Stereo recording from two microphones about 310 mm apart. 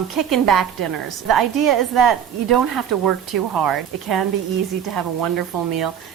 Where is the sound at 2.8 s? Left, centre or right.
Right.